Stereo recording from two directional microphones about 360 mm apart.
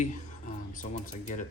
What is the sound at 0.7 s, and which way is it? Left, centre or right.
Mechanisms, left.